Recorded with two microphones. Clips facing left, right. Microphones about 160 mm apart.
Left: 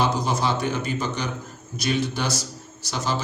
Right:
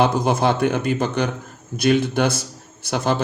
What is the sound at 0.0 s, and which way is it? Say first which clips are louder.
A man's voice: right 5 dB; 55° right (ahead or behind).